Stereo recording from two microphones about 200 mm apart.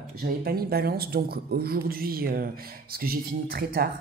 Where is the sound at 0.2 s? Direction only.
50° right (ahead or behind).